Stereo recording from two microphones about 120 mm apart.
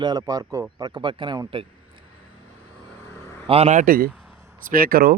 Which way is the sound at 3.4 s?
55° right (ahead or behind).